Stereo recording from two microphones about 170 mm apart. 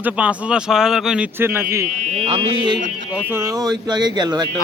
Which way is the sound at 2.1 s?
35° right (ahead or behind).